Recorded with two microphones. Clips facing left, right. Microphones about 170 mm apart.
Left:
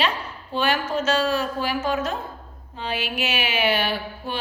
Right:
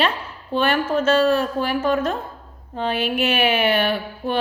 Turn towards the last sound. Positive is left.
turn(degrees=-55)  # may be behind; listen again after turning